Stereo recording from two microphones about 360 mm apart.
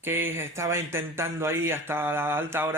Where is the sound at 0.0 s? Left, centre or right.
Centre.